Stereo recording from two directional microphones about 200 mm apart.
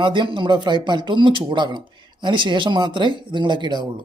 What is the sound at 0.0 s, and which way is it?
Speech, 25° right (ahead or behind).